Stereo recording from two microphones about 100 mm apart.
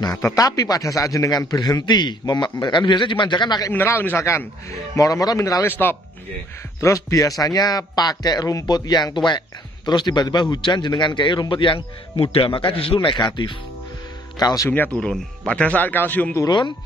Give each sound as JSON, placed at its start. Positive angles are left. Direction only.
{"t": 0.0, "sound": "a man's voice", "side_deg": 35}
{"t": 3.7, "sound": "a man's voice", "side_deg": 20}
{"t": 6.8, "sound": "a man's voice", "side_deg": 35}
{"t": 14.4, "sound": "a man's voice", "side_deg": 35}
{"t": 15.0, "sound": "speech", "side_deg": 10}
{"t": 16.3, "sound": "a man's voice", "side_deg": 45}